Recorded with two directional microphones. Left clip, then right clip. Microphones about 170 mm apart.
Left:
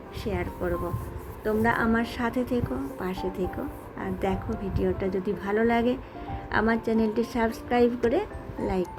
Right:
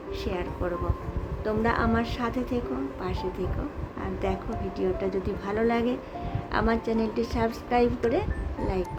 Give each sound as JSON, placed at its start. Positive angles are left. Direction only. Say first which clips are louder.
{"t": 0.3, "sound": "a woman's voice", "louder": "left 2 dB", "side_deg": 10}